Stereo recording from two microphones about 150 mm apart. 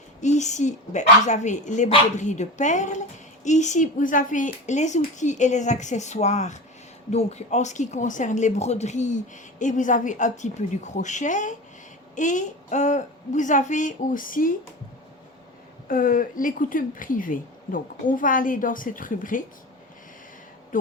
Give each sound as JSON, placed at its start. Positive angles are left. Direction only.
{"t": 0.2, "sound": "speech", "side_deg": 50}
{"t": 15.9, "sound": "speech", "side_deg": 65}